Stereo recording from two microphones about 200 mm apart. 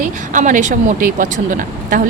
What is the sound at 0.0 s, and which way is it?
Speech, 40° right (ahead or behind).